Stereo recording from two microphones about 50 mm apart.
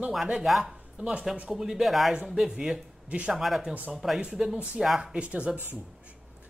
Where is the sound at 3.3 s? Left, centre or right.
Centre; by 5.5 s right.